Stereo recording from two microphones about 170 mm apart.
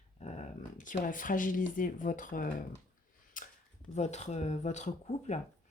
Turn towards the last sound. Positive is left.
turn(degrees=40)  # may be behind; listen again after turning